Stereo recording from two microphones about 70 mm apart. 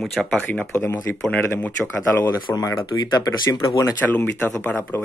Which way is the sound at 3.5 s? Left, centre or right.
Left.